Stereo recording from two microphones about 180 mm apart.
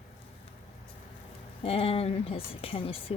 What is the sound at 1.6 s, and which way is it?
Speech, 30° left (ahead or behind).